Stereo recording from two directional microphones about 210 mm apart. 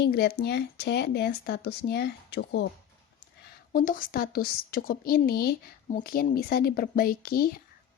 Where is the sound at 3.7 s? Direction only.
40° left (ahead or behind).